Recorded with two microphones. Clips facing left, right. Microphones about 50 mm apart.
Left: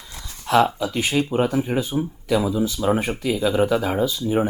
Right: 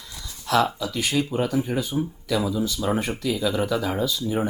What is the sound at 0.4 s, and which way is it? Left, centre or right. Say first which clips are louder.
Speech: left 4 dB; left.